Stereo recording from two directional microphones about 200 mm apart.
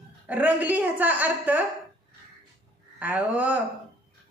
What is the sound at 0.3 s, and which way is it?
A woman's voice, 10° right (ahead or behind).